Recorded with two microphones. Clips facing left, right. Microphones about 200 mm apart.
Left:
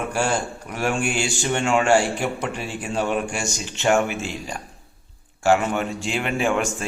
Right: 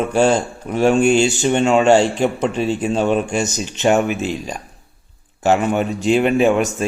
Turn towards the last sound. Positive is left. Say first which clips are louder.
# right 7 dB
turn(degrees=-20)  # may be behind; listen again after turning